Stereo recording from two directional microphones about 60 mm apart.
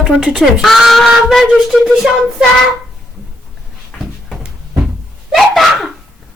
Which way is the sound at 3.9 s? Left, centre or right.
Left.